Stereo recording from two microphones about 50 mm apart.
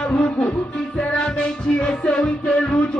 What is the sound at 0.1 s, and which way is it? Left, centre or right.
Music, left.